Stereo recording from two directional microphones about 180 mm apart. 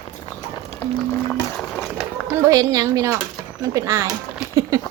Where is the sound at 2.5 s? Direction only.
20° right (ahead or behind).